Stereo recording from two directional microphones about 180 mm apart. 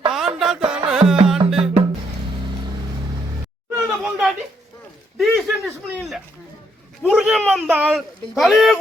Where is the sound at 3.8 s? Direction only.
5° right (ahead or behind).